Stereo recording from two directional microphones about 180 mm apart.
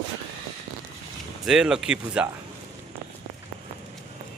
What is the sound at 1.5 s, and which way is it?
Speech, 5° right (ahead or behind).